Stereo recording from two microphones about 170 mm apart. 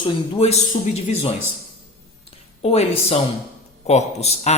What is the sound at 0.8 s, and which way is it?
Speech, 50° left (ahead or behind).